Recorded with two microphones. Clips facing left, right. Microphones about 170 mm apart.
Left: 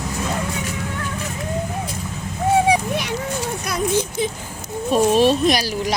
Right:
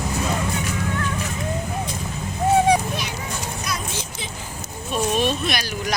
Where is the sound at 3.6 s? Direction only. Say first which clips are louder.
Left 9 dB; 55° left (ahead or behind).